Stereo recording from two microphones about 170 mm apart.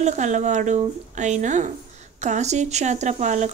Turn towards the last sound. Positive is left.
turn(degrees=-45)  # may be behind; listen again after turning